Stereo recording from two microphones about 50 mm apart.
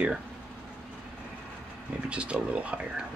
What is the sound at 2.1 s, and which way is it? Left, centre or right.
Speech, right.